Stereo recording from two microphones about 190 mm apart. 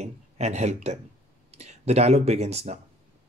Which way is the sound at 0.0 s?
35° right (ahead or behind).